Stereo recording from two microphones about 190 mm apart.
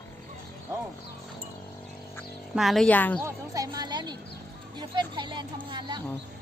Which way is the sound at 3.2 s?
15° right (ahead or behind).